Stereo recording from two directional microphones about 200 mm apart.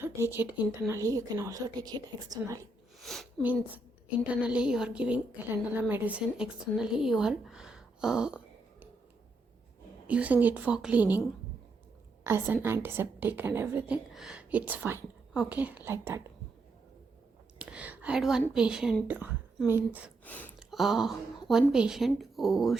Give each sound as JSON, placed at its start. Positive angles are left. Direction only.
{"t": 0.0, "sound": "a woman's voice", "side_deg": -10}
{"t": 3.0, "sound": "speech", "side_deg": 0}
{"t": 10.1, "sound": "a woman's voice", "side_deg": -5}
{"t": 12.2, "sound": "a woman's voice", "side_deg": -10}
{"t": 17.6, "sound": "a woman's voice", "side_deg": -5}
{"t": 20.2, "sound": "speech", "side_deg": 10}